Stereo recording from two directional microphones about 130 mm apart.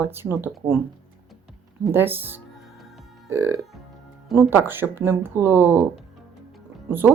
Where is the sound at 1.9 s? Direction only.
15° right (ahead or behind).